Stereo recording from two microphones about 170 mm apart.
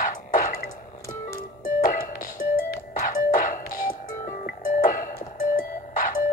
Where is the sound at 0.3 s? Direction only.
55° left (ahead or behind).